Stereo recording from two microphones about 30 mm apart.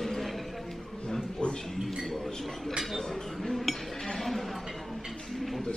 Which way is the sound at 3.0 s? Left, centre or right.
Centre.